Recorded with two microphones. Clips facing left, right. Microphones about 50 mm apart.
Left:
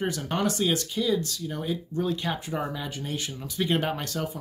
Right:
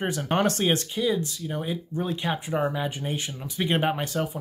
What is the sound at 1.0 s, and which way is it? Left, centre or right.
Speech, right.